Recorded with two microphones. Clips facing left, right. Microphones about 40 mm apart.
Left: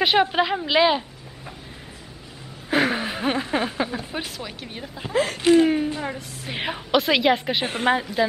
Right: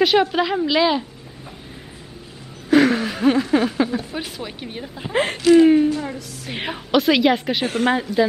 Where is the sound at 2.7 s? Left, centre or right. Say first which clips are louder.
Right 6 dB; centre.